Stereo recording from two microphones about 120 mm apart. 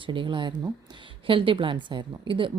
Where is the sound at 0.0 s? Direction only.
45° right (ahead or behind).